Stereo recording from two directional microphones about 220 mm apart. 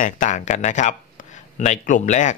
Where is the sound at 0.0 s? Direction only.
35° left (ahead or behind).